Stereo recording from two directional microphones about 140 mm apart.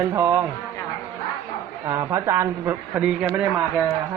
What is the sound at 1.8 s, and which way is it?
A man's voice, 25° right (ahead or behind).